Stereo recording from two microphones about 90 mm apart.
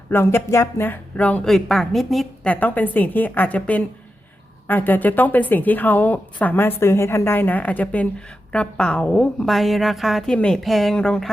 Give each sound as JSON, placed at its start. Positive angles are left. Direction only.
{"t": 0.1, "sound": "a woman's voice", "side_deg": 25}
{"t": 1.5, "sound": "a woman's voice", "side_deg": 5}
{"t": 2.4, "sound": "a woman's voice", "side_deg": 15}
{"t": 10.3, "sound": "a woman's voice", "side_deg": 10}
{"t": 10.6, "sound": "a woman's voice", "side_deg": 0}